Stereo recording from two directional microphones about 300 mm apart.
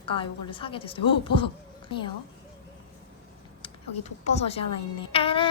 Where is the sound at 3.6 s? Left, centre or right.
Left.